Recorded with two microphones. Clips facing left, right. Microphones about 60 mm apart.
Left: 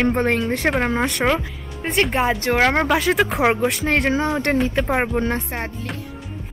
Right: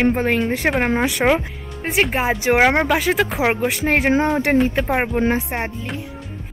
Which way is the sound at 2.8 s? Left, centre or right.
Centre.